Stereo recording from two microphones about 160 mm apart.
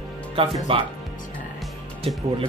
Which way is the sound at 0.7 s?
35° right (ahead or behind).